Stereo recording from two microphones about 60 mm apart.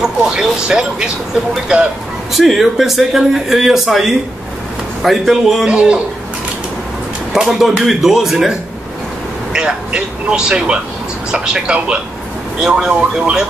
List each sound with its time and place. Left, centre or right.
0.0 s speech: centre
2.3 s speech: centre
5.7 s speech: centre
7.4 s speech: centre